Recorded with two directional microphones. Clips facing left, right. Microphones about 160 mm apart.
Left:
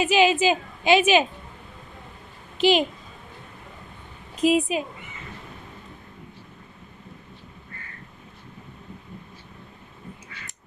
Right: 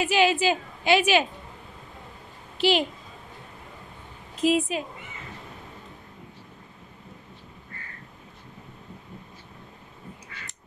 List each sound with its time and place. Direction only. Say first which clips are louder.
0.0 s a woman's voice: left 3 dB; 20° left (ahead or behind)
2.5 s a woman's voice: left 3 dB; 15° left (ahead or behind)
4.4 s a woman's voice: left 2 dB; 15° left (ahead or behind)